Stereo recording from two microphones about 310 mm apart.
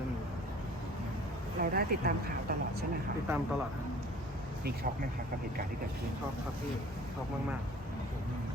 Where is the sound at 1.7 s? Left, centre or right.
Right.